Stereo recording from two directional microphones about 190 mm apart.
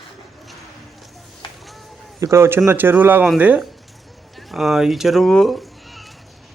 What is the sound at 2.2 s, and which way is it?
A man's voice, 15° right (ahead or behind).